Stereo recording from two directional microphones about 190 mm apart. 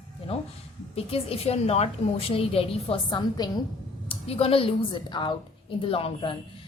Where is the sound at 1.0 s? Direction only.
30° left (ahead or behind).